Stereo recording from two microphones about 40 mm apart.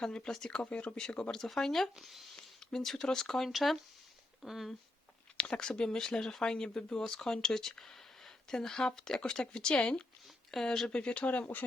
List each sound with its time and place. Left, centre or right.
0.0 s speech: centre
0.7 s speech: left
0.9 s speech: left
2.0 s speech: centre
2.3 s speech: centre
3.5 s speech: centre
5.5 s speech: centre
10.5 s speech: centre
10.8 s speech: left